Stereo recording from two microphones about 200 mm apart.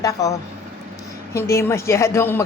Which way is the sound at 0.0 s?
15° left (ahead or behind).